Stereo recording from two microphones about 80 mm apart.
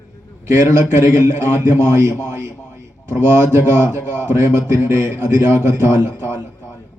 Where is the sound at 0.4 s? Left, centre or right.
Right.